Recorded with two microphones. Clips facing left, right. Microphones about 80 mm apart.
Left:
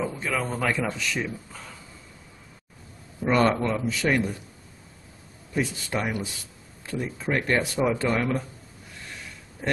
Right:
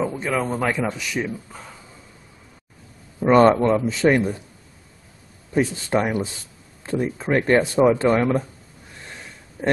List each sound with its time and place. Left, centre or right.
0.0 s a man's voice: right
3.2 s a man's voice: right
5.5 s a man's voice: right